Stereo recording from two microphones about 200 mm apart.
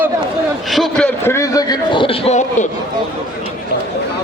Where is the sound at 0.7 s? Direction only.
Centre (ahead or behind).